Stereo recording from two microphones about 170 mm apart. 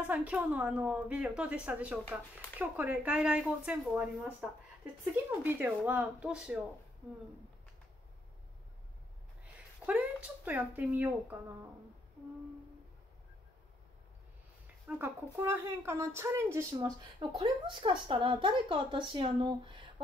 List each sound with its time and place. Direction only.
0.0 s a woman's voice: 10° right (ahead or behind)
9.8 s a woman's voice: 10° right (ahead or behind)
14.9 s a woman's voice: 15° right (ahead or behind); by 19.9 s 30° right (ahead or behind)